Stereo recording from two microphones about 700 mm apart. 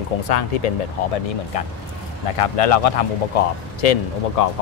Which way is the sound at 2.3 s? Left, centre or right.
Left.